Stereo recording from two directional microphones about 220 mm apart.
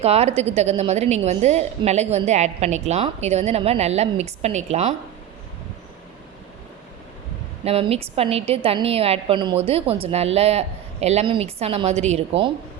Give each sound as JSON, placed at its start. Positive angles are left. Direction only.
{"t": 0.0, "sound": "a woman's voice", "side_deg": -30}
{"t": 7.6, "sound": "a woman's voice", "side_deg": -25}